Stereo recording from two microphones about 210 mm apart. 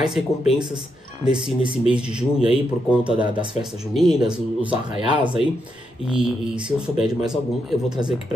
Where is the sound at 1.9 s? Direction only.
5° right (ahead or behind).